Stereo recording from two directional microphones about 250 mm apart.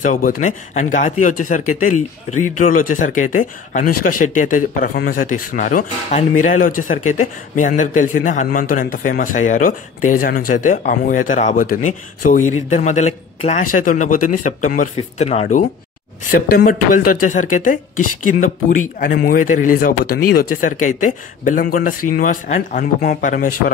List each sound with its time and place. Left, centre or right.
0.0 s a man's voice: left
18.9 s a man's voice: left